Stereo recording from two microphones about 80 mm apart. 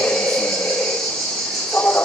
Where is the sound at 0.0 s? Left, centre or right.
Centre.